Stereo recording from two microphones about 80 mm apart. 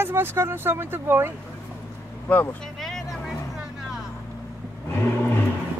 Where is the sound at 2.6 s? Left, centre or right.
Centre.